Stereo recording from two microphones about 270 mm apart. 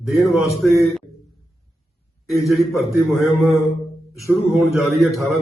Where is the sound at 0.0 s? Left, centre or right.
Centre.